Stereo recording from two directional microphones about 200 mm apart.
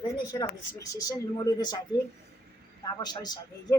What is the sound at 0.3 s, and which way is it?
A woman's voice, 15° left (ahead or behind).